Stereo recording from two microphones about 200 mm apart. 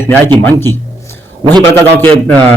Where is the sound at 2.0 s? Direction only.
10° left (ahead or behind).